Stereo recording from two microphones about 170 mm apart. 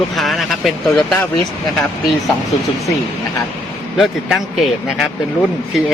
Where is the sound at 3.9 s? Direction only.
Centre (ahead or behind).